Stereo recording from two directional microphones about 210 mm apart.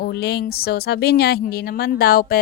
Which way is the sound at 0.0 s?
50° left (ahead or behind).